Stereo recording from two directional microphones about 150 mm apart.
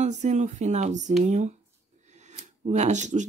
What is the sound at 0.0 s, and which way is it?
Speech, 50° right (ahead or behind).